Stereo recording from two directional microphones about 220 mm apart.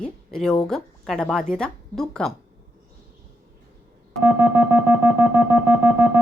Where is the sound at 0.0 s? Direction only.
5° left (ahead or behind).